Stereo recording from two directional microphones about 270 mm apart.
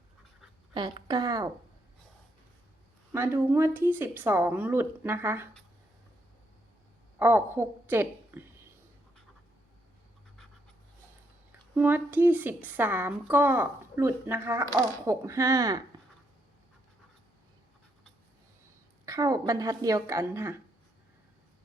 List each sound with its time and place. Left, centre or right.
0.7 s a woman's voice: centre
3.1 s a woman's voice: centre
7.2 s a woman's voice: centre
11.7 s a woman's voice: centre
19.0 s a woman's voice: centre